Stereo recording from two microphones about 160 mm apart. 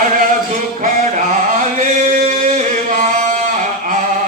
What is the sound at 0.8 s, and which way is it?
Music, 55° right (ahead or behind).